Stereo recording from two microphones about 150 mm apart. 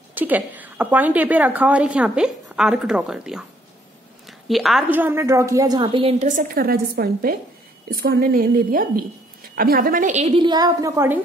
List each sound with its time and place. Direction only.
0.1 s a woman's voice: 10° right (ahead or behind); by 6.1 s 35° right (ahead or behind)
6.1 s a woman's voice: 60° right (ahead or behind); by 7.3 s 90° right
7.9 s a woman's voice: 75° right (ahead or behind); by 10.3 s 55° right (ahead or behind)
10.3 s a woman's voice: 30° right (ahead or behind)